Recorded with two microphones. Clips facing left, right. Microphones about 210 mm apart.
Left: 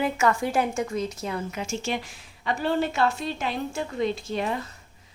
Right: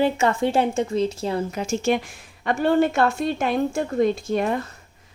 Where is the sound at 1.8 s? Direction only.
55° right (ahead or behind).